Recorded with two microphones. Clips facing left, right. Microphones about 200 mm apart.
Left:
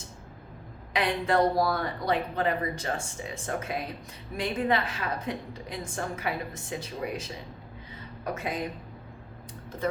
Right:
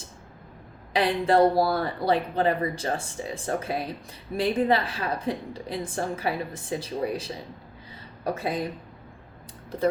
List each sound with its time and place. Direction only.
0.9 s a woman's voice: 30° right (ahead or behind)